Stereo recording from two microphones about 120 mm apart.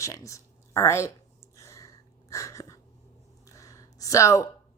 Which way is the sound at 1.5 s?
25° left (ahead or behind).